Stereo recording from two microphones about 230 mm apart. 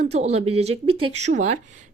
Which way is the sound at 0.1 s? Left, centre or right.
Right.